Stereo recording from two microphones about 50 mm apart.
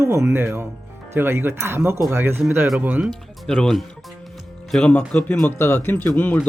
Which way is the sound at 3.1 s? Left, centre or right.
Centre.